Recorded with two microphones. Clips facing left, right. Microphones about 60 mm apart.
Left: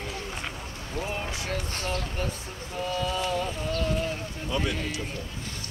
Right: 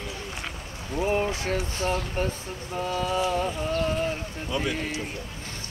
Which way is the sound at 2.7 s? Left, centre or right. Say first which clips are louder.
Right 3 dB; right.